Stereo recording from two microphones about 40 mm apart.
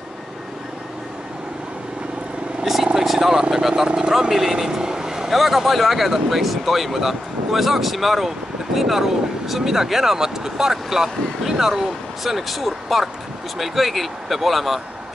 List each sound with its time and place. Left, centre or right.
2.6 s vehicle: centre
3.3 s speech: centre
4.3 s speech: centre